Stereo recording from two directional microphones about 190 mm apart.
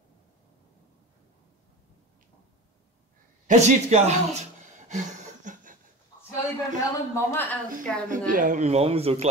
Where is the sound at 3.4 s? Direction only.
40° right (ahead or behind).